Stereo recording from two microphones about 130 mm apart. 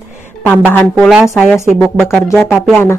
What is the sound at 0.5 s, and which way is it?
Speech, 15° left (ahead or behind).